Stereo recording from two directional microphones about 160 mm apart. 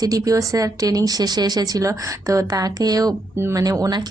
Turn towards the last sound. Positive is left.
turn(degrees=-25)  # may be behind; listen again after turning